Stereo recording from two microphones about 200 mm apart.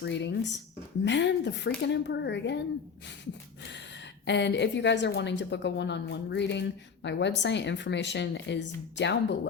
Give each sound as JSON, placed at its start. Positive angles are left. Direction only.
{"t": 0.0, "sound": "a woman's voice", "side_deg": 60}
{"t": 3.6, "sound": "a woman's voice", "side_deg": 60}